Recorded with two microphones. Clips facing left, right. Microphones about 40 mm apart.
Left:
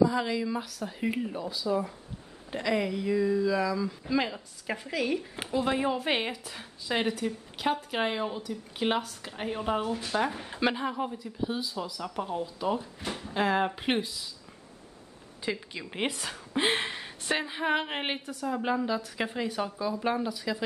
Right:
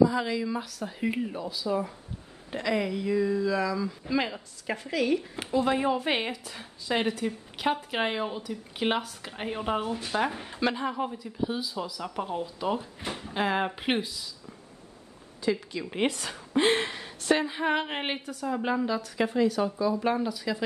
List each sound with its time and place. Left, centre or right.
0.0 s speech: centre
10.5 s a woman's voice: centre
10.9 s speech: centre
15.4 s speech: left
15.8 s speech: centre
19.9 s speech: centre